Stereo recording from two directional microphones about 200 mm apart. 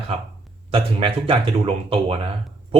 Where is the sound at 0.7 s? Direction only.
25° right (ahead or behind).